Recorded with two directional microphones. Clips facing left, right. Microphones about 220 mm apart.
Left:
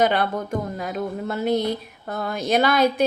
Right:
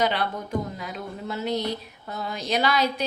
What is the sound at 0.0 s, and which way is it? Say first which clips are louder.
A woman's voice: left 5 dB; 50° left (ahead or behind).